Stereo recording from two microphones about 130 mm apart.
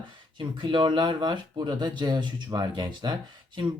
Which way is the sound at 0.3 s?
40° right (ahead or behind).